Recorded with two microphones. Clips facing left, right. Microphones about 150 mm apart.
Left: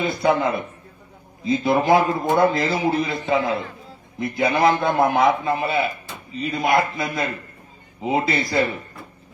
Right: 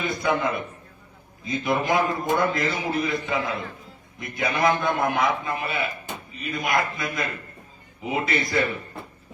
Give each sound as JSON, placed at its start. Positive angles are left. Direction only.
{"t": 0.0, "sound": "a man's voice", "side_deg": 30}